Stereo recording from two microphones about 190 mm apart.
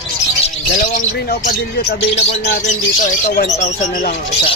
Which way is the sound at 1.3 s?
55° left (ahead or behind).